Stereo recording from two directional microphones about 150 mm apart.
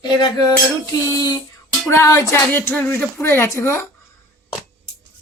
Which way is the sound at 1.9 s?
20° left (ahead or behind).